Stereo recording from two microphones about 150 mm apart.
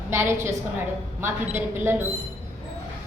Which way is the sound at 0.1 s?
15° right (ahead or behind).